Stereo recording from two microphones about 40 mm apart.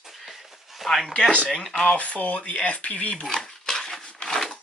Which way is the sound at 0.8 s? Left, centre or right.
Centre.